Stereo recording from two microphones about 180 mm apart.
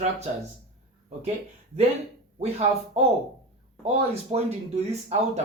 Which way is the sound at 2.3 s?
35° right (ahead or behind).